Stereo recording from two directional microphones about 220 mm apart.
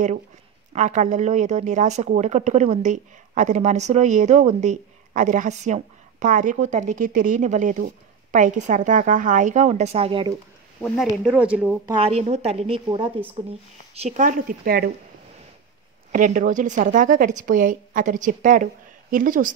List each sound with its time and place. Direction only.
0.7 s speech: 35° right (ahead or behind)
10.8 s speech: centre (ahead or behind)
11.9 s a woman's voice: 25° right (ahead or behind)
14.0 s speech: 35° right (ahead or behind)
16.1 s speech: 35° right (ahead or behind)